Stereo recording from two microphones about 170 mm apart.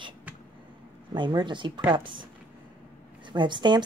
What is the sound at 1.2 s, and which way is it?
Speech, 25° right (ahead or behind).